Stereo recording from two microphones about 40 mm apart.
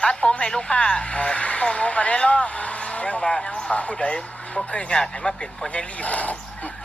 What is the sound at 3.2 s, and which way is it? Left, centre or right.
Speech, left.